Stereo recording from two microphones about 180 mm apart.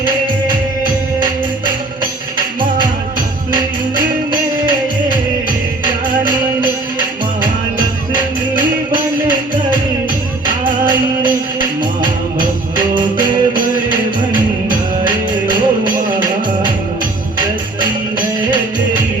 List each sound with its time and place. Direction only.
2.6 s music: 25° right (ahead or behind)
10.4 s music: 25° right (ahead or behind)
12.7 s music: 25° right (ahead or behind)
15.0 s music: 25° right (ahead or behind)
17.4 s music: 25° right (ahead or behind)